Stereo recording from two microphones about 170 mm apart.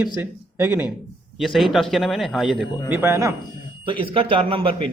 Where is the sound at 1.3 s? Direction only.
Centre (ahead or behind).